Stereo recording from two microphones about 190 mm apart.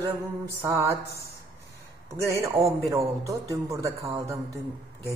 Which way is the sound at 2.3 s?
15° right (ahead or behind).